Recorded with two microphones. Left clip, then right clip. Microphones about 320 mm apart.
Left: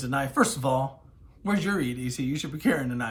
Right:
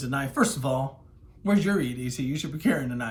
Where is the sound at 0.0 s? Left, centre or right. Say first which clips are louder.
Left 1 dB; centre.